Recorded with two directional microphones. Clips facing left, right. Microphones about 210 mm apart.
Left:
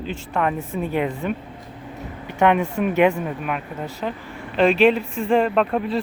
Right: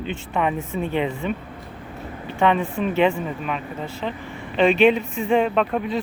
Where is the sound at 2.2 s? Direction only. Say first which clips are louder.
Left 2 dB; 15° left (ahead or behind).